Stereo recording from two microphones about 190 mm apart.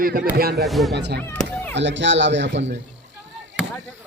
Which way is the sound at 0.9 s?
60° right (ahead or behind).